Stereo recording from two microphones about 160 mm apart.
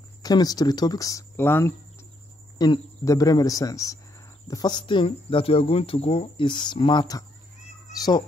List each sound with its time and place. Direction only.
0.2 s speech: 25° left (ahead or behind)